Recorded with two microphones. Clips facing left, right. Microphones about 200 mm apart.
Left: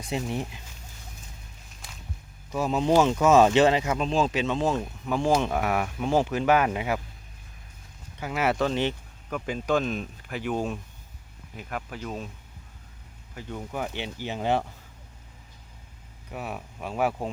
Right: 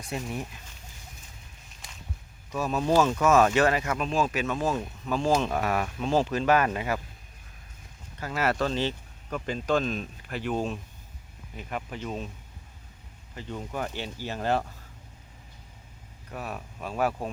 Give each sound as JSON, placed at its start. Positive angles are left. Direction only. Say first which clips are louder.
{"t": 0.0, "sound": "speech", "louder": "left 4 dB", "side_deg": 25}
{"t": 2.6, "sound": "speech", "louder": "left 2 dB", "side_deg": 20}
{"t": 8.2, "sound": "speech", "louder": "left 2 dB", "side_deg": 15}
{"t": 13.3, "sound": "speech", "louder": "even", "side_deg": 5}
{"t": 13.9, "sound": "speech", "louder": "left 2 dB", "side_deg": 20}
{"t": 16.3, "sound": "speech", "louder": "left 1 dB", "side_deg": 10}